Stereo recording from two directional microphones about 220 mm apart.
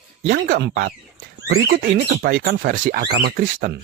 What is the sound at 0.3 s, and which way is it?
Speech, 45° right (ahead or behind).